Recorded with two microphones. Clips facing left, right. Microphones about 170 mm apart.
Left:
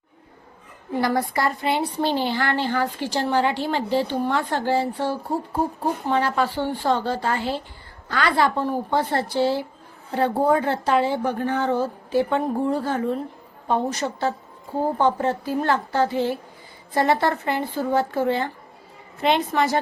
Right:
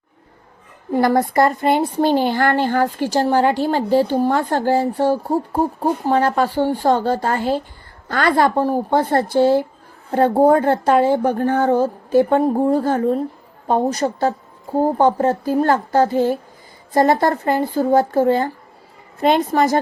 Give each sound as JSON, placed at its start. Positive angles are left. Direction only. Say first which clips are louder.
{"t": 0.9, "sound": "a woman's voice", "louder": "right 6 dB", "side_deg": -50}